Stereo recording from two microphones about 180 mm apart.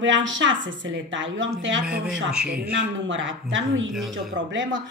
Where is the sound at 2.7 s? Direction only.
90° right.